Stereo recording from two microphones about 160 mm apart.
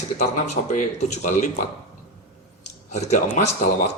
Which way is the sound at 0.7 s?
50° left (ahead or behind).